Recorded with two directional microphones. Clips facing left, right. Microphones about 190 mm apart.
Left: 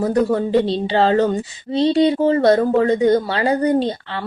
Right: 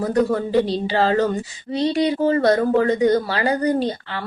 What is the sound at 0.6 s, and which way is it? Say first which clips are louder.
Speech: left 3 dB; 25° left (ahead or behind).